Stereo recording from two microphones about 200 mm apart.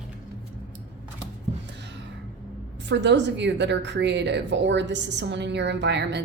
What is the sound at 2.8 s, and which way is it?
A woman's voice, 60° right (ahead or behind).